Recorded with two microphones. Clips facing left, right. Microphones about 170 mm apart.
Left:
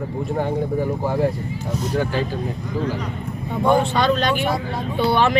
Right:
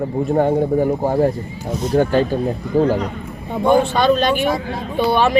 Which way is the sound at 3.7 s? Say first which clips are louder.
Right 4 dB; 15° right (ahead or behind).